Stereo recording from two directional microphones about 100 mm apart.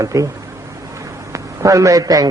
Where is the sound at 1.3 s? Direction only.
35° right (ahead or behind).